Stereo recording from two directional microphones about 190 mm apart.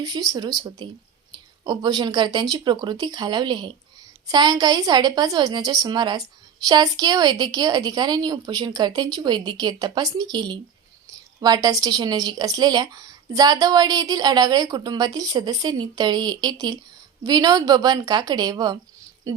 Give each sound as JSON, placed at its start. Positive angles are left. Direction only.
{"t": 0.0, "sound": "a woman's voice", "side_deg": -20}